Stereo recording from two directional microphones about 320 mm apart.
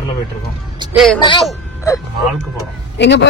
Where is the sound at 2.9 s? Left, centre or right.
Left.